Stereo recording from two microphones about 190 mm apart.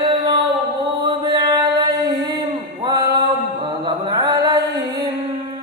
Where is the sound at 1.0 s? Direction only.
25° right (ahead or behind).